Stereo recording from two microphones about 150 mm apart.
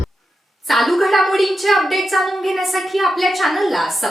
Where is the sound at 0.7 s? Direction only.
Centre (ahead or behind).